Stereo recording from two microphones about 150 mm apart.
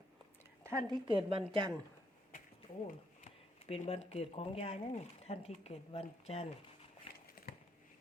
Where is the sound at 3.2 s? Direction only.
50° left (ahead or behind).